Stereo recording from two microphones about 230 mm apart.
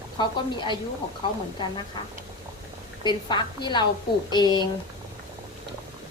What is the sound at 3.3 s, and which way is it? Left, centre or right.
A woman's voice, centre.